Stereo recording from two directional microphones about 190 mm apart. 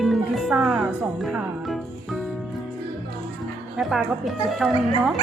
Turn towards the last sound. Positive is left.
turn(degrees=0)  # may be behind; listen again after turning